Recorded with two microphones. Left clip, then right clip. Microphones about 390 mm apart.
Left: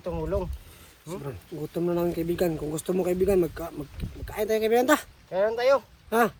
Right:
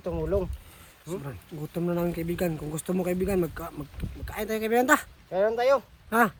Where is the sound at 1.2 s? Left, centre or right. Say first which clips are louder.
Left 4 dB; centre.